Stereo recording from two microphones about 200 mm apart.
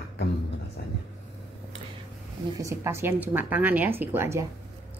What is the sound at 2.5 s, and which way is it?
A woman's voice, 15° right (ahead or behind).